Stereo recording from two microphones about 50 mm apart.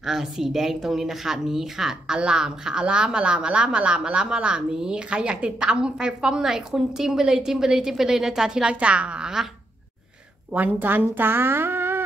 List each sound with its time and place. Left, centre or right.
0.0 s speech: centre
10.5 s speech: right